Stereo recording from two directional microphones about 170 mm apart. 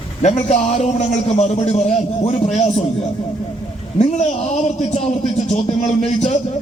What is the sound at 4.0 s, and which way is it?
A man's voice, 40° left (ahead or behind).